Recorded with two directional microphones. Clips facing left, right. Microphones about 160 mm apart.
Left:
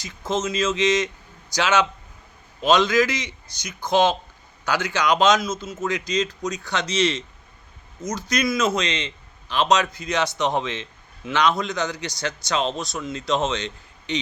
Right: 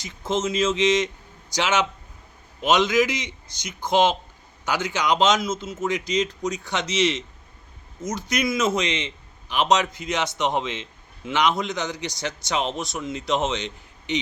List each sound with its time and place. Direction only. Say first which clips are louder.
0.0 s a man's voice: even; 25° right (ahead or behind)